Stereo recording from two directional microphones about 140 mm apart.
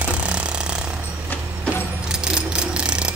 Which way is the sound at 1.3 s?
10° left (ahead or behind).